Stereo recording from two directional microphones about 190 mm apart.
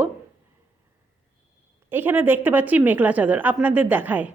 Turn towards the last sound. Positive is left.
turn(degrees=-10)  # may be behind; listen again after turning